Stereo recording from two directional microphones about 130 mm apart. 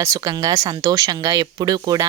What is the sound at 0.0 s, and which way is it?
Speech, 25° right (ahead or behind).